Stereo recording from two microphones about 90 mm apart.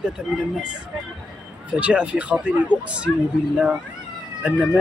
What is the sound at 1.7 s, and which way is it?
Speech, 10° right (ahead or behind).